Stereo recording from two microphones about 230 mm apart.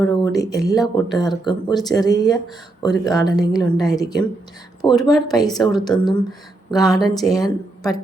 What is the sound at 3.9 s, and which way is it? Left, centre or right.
Speech, centre.